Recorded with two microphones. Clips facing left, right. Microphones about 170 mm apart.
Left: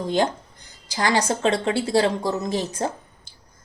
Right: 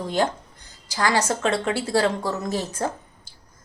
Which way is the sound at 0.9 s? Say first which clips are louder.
Left 1 dB; 20° left (ahead or behind).